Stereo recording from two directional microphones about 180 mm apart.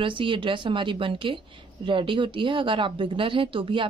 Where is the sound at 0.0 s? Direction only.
30° right (ahead or behind).